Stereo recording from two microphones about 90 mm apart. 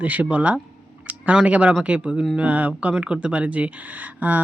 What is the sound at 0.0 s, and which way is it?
Speech, 15° right (ahead or behind).